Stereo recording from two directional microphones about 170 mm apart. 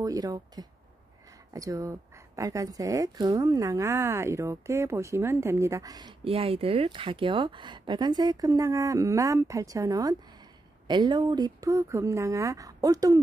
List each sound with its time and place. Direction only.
0.0 s speech: 20° right (ahead or behind)